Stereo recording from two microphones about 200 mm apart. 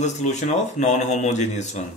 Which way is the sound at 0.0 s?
35° left (ahead or behind).